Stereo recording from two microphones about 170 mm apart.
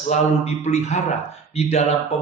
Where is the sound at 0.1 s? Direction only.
40° left (ahead or behind).